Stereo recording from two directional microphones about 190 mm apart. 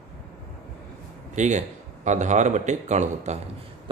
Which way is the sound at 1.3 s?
40° right (ahead or behind).